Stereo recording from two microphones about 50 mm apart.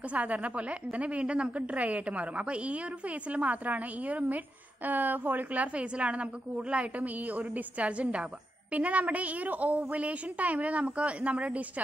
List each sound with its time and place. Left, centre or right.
0.1 s a woman's voice: right